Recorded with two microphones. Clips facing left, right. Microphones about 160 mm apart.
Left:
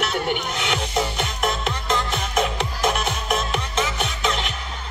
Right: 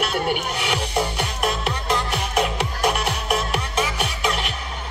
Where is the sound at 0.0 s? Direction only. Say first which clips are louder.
Right 1 dB; 10° right (ahead or behind).